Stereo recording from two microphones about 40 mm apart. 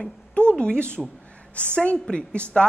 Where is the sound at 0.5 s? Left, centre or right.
Left.